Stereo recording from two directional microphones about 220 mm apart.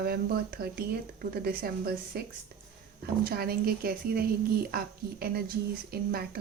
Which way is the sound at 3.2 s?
45° right (ahead or behind).